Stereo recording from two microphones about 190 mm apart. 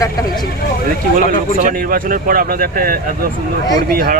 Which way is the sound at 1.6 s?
45° right (ahead or behind).